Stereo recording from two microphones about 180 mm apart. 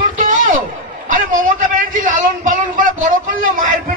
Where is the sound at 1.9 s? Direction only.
45° right (ahead or behind).